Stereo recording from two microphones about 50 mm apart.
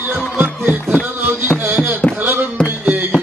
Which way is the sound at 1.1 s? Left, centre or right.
Right.